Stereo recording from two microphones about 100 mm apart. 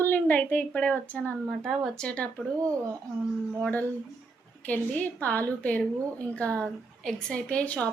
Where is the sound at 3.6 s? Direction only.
15° left (ahead or behind).